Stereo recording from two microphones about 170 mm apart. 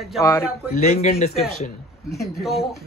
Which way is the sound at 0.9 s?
40° left (ahead or behind).